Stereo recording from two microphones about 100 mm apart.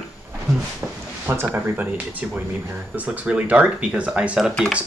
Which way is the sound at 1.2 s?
25° right (ahead or behind).